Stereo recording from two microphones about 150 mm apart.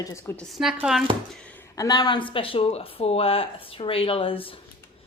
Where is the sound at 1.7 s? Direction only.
25° left (ahead or behind).